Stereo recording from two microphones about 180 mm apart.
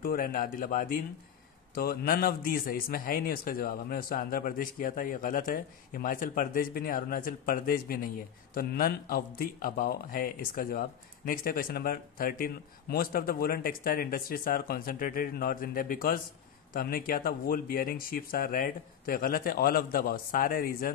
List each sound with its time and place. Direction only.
0.0 s a man's voice: 50° left (ahead or behind)